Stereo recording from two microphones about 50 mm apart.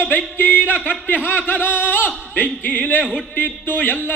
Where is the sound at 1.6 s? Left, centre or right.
Left.